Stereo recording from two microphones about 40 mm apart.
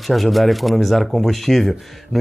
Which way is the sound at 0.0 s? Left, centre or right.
Centre.